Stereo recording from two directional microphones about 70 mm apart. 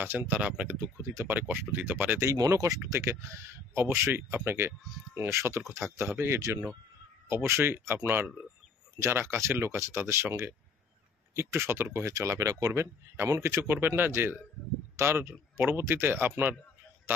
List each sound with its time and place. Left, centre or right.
0.0 s speech: right
0.4 s speech: centre
1.0 s speech: right
1.5 s speech: right
2.3 s speech: right
3.7 s speech: right
7.2 s speech: right
9.0 s speech: right
12.1 s speech: right
13.3 s speech: right